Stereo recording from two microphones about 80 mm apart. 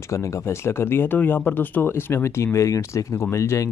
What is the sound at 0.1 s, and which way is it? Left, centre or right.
Speech, left.